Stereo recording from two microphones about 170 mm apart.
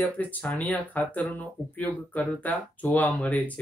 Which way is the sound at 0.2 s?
10° left (ahead or behind).